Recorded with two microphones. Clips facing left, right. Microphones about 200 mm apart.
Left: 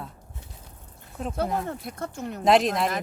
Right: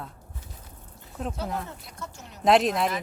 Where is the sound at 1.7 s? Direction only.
55° left (ahead or behind).